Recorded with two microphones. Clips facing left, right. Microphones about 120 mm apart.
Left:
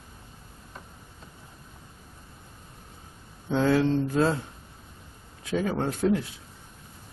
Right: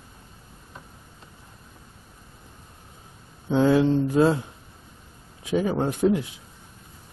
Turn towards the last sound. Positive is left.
turn(degrees=-15)  # may be behind; listen again after turning